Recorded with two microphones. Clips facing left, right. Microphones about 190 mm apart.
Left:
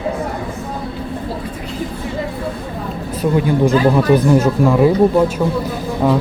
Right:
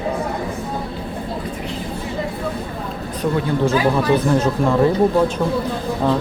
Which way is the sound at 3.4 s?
10° left (ahead or behind).